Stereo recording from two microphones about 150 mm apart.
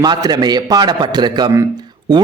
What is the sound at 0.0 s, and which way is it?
A man's voice, 25° right (ahead or behind).